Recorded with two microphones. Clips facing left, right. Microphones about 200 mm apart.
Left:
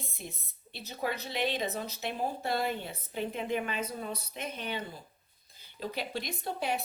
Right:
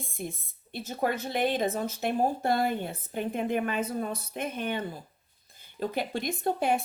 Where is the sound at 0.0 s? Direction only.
50° right (ahead or behind).